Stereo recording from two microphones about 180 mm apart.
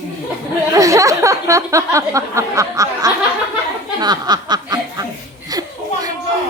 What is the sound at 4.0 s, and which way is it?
Snicker, 25° right (ahead or behind).